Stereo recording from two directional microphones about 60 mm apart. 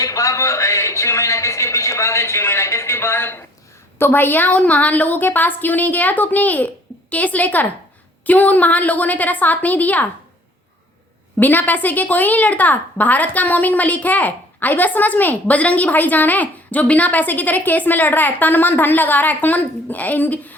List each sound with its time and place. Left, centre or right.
0.0 s a sound: left
3.9 s a woman's voice: left
11.3 s a woman's voice: left